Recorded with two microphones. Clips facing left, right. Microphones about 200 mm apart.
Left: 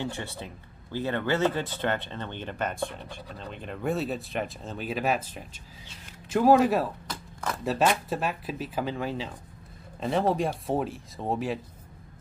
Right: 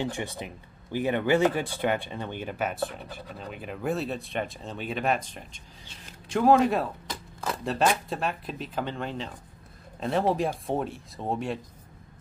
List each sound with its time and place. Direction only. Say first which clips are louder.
0.0 s speech: right 3 dB; 15° right (ahead or behind); by 11.6 s centre (ahead or behind)